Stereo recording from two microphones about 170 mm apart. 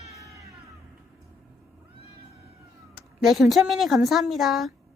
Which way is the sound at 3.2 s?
Centre (ahead or behind).